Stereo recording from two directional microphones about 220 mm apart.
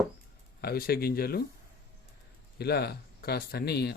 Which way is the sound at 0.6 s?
45° left (ahead or behind).